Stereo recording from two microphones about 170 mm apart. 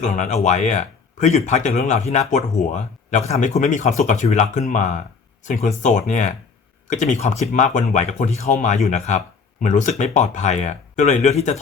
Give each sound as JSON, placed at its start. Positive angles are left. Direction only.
{"t": 0.0, "sound": "speech", "side_deg": 45}